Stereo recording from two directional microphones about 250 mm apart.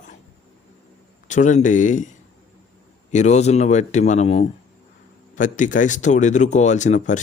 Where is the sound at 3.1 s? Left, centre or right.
Left.